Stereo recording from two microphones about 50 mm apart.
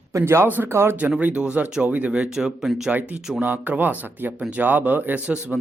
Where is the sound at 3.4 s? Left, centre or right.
Right.